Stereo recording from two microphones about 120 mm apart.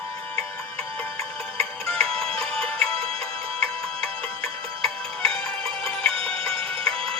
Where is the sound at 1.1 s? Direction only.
55° right (ahead or behind).